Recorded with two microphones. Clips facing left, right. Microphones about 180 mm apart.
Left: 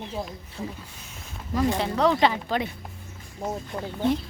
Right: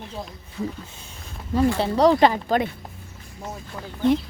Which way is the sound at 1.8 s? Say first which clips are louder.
Right 6 dB; 40° right (ahead or behind).